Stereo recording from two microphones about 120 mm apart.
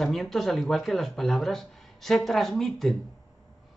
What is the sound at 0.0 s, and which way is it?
A man's voice, centre (ahead or behind).